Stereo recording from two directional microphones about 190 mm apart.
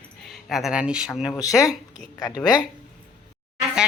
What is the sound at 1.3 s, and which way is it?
Speech, 15° left (ahead or behind).